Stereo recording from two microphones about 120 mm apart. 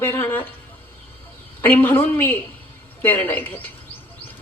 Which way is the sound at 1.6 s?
15° left (ahead or behind).